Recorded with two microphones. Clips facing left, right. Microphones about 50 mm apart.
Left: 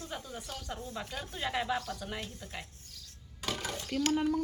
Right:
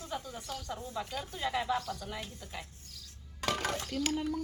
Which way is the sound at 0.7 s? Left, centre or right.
Left.